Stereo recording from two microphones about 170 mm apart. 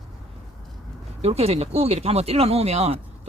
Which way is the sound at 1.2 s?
35° right (ahead or behind).